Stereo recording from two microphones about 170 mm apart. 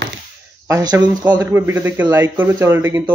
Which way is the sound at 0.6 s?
20° right (ahead or behind).